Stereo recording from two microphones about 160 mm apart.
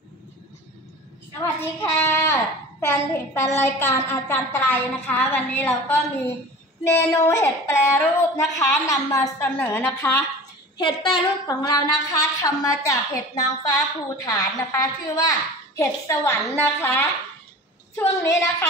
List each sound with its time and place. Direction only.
1.6 s a child's voice: 15° left (ahead or behind)
10.8 s a woman's voice: 30° left (ahead or behind); by 17.1 s 15° left (ahead or behind)
18.2 s a child's voice: 20° left (ahead or behind)